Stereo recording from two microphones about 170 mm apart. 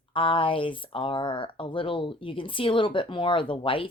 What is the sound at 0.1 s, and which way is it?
Speech, 30° left (ahead or behind).